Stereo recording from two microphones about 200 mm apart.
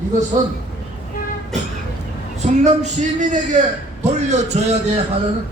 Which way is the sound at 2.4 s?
35° right (ahead or behind).